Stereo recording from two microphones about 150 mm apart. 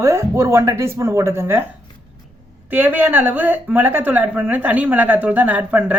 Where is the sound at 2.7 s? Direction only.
10° right (ahead or behind).